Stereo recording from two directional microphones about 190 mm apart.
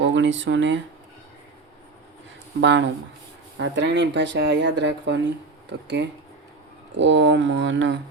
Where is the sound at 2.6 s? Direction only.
70° right (ahead or behind).